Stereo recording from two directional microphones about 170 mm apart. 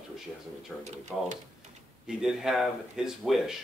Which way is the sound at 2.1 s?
Centre (ahead or behind).